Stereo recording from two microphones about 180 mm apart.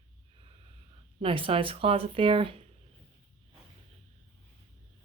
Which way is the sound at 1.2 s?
30° right (ahead or behind).